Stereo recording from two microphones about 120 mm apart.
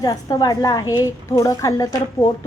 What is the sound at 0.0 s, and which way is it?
A woman's voice, 30° left (ahead or behind).